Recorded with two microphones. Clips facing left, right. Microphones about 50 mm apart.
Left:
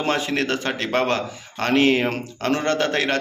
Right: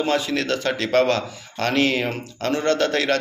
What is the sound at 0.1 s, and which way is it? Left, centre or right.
A man's voice, left.